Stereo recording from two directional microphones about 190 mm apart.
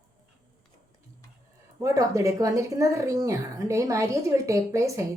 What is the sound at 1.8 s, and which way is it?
Speech, 15° right (ahead or behind).